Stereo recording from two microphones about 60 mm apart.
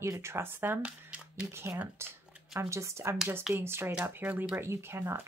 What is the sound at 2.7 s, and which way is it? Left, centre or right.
Speech, right.